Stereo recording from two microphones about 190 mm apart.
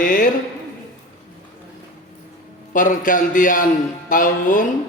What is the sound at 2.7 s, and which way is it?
Speech, 45° left (ahead or behind).